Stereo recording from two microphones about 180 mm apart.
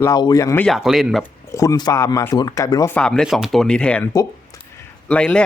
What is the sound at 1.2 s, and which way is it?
Speech, 15° left (ahead or behind).